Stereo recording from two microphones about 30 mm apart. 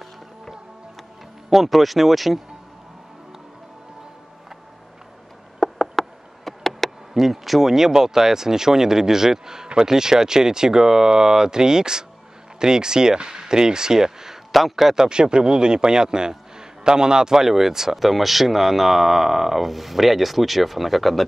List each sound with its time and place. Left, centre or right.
1.5 s speech: centre
5.6 s a sound: centre
7.2 s speech: centre
7.7 s speech: centre
14.5 s speech: centre
15.0 s speech: right
17.9 s speech: centre